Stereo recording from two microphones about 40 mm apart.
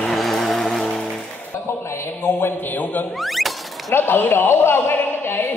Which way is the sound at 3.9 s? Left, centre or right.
Left.